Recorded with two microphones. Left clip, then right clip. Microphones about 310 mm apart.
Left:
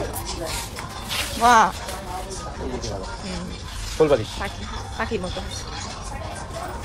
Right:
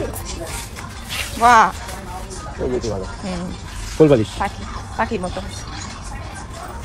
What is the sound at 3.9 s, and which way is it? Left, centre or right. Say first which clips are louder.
Speech: right 5 dB; right.